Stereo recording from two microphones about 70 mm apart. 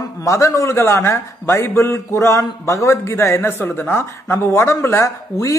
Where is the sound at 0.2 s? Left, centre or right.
Left.